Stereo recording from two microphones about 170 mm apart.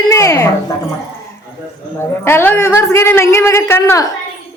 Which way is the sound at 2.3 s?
15° left (ahead or behind).